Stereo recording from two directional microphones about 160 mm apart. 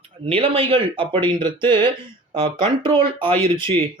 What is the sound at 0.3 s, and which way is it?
Speech, 35° right (ahead or behind).